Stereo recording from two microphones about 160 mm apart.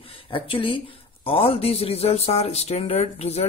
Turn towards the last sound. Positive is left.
turn(degrees=40)  # may be behind; listen again after turning